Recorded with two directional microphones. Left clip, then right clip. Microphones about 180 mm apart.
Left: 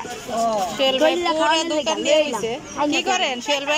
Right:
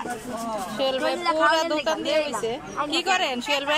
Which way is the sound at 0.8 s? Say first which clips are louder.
Left 5 dB; 5° left (ahead or behind).